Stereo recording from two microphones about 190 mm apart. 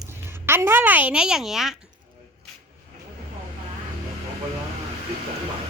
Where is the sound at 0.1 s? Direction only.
10° right (ahead or behind).